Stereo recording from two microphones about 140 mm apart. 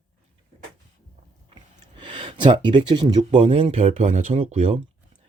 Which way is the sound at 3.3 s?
55° right (ahead or behind).